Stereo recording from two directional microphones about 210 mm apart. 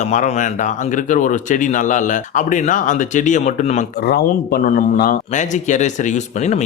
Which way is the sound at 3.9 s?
50° left (ahead or behind).